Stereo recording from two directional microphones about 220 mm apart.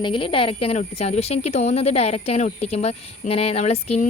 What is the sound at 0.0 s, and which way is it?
Speech, 25° left (ahead or behind).